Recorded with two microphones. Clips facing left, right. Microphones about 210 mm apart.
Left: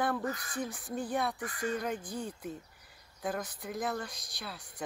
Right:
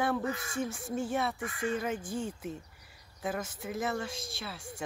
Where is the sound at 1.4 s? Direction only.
45° left (ahead or behind).